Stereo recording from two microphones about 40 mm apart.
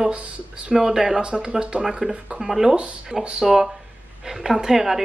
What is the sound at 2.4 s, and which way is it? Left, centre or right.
A woman's voice, centre.